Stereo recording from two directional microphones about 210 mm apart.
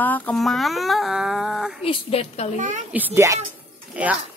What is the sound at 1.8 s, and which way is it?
Speech, 25° left (ahead or behind).